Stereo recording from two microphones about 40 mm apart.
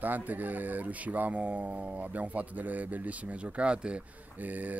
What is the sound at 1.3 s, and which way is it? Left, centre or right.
Speech, right.